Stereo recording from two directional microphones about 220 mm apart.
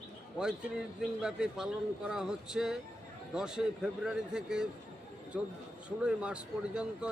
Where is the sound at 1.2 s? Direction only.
5° right (ahead or behind).